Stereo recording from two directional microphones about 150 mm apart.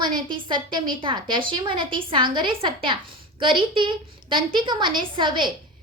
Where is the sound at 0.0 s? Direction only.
30° right (ahead or behind).